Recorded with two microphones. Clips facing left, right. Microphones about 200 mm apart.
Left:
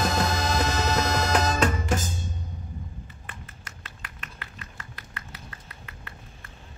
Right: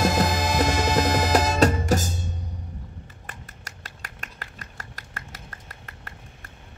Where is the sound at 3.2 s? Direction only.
40° right (ahead or behind).